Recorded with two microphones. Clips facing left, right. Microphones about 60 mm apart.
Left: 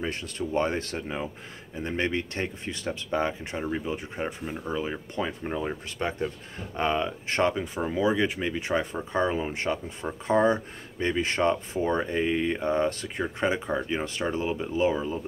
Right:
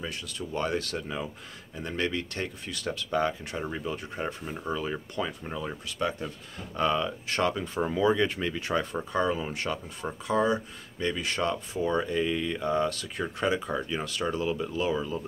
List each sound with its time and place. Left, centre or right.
0.0 s speech: left
7.6 s speech: centre
10.2 s speech: left